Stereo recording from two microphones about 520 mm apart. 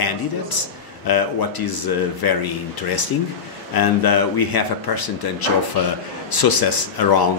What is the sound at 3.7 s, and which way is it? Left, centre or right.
A man's voice, left.